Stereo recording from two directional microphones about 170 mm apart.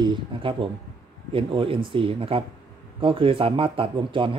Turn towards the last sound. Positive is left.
turn(degrees=-30)  # may be behind; listen again after turning